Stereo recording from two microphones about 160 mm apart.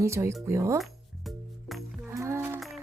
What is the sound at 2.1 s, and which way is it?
Music, 15° right (ahead or behind).